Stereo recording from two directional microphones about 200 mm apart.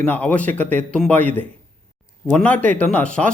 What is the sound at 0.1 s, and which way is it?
Speech, 5° left (ahead or behind).